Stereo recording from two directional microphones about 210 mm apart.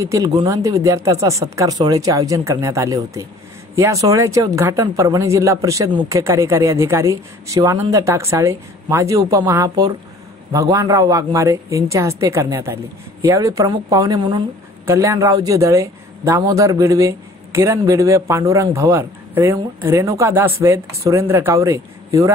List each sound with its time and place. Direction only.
0.0 s speech: 15° right (ahead or behind)